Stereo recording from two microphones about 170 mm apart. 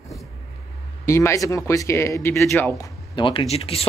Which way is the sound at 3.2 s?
30° left (ahead or behind).